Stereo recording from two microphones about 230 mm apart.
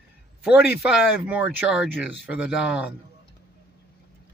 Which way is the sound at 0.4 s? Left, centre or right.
Centre.